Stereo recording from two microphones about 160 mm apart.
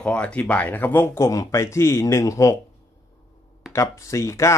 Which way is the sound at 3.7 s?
20° left (ahead or behind).